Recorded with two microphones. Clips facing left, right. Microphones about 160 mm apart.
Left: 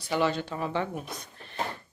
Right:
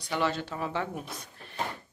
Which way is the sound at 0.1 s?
Centre (ahead or behind).